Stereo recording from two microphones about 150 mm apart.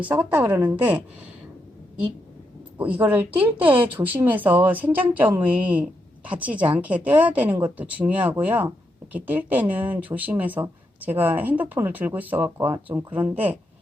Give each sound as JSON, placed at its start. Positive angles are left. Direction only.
{"t": 0.0, "sound": "speech", "side_deg": -10}
{"t": 2.7, "sound": "speech", "side_deg": -10}